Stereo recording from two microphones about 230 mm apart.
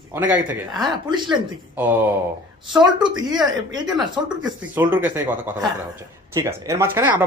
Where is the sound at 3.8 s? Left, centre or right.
Centre.